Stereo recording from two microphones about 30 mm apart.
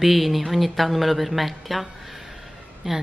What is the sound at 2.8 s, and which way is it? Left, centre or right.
Speech, centre.